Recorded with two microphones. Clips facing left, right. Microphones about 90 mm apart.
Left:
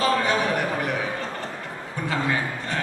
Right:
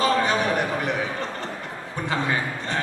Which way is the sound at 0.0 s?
20° right (ahead or behind).